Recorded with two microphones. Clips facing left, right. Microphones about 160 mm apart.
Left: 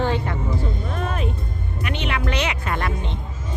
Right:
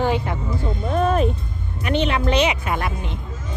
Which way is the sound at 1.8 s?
35° right (ahead or behind).